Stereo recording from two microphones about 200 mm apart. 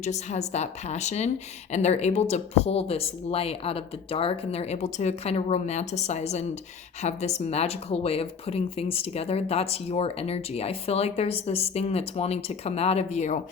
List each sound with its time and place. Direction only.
0.0 s speech: 35° left (ahead or behind)